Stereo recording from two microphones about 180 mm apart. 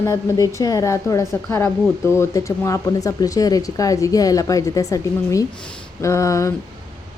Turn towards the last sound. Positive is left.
turn(degrees=15)  # may be behind; listen again after turning